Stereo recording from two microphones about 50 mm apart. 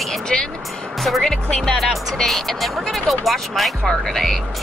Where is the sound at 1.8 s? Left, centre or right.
Centre.